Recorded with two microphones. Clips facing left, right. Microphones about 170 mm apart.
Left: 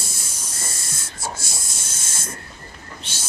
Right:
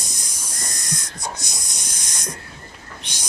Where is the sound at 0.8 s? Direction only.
15° right (ahead or behind).